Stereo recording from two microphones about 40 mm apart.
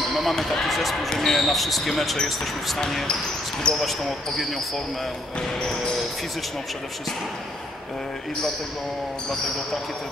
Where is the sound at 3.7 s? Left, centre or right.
Left.